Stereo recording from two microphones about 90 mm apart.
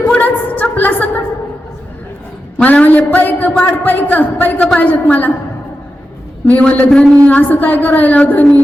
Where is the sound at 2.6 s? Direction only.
15° left (ahead or behind).